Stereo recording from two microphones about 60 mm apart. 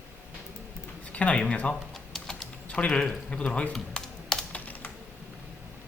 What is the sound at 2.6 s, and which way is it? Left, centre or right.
Speech, centre.